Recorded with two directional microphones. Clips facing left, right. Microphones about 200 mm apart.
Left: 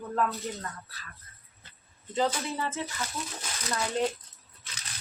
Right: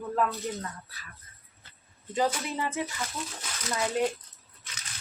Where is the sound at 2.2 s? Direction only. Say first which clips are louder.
Even; 15° right (ahead or behind).